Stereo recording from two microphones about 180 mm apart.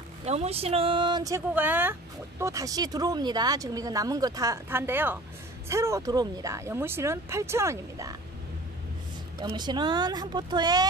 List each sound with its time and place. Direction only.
0.2 s speech: 35° right (ahead or behind); by 8.2 s 15° right (ahead or behind)
9.4 s speech: 25° right (ahead or behind)